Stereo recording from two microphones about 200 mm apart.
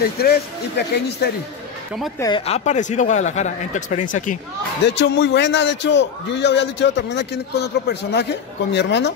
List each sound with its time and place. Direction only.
0.2 s a man's voice: 55° left (ahead or behind)
2.1 s speech: 20° left (ahead or behind)
2.4 s speech: 35° left (ahead or behind)
4.8 s a man's voice: 60° left (ahead or behind)